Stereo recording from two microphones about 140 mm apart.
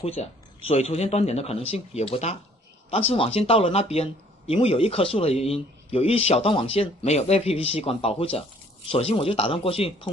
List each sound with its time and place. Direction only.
0.0 s speech: 45° left (ahead or behind)